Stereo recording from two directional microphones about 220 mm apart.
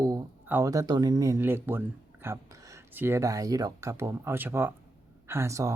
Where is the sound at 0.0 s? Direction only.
10° right (ahead or behind).